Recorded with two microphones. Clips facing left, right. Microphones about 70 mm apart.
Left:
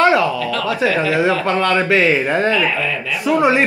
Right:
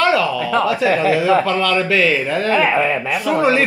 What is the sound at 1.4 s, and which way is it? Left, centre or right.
Speech, left.